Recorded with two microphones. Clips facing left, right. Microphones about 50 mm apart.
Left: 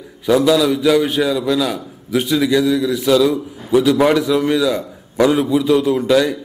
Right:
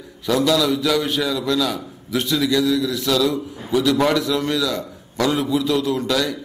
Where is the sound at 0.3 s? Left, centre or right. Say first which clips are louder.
Left 5 dB; centre.